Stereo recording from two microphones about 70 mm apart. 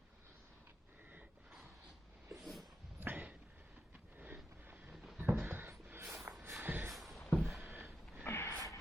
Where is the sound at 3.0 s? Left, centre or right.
Right.